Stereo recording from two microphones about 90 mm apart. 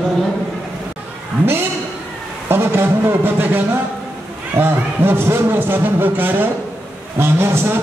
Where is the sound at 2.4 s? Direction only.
25° right (ahead or behind).